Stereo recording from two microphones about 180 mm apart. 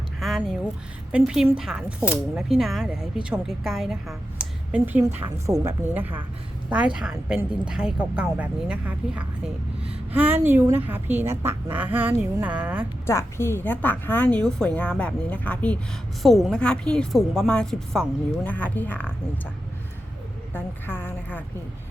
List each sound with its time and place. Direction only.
0.2 s a sound: centre (ahead or behind)
1.1 s a woman's voice: 5° right (ahead or behind)
9.8 s a sound: 35° right (ahead or behind)
10.2 s a woman's voice: 10° right (ahead or behind)
13.1 s a woman's voice: 15° left (ahead or behind)
20.5 s a woman's voice: 10° left (ahead or behind)